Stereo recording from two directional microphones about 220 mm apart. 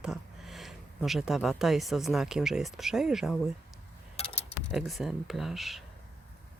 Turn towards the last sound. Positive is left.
turn(degrees=0)  # may be behind; listen again after turning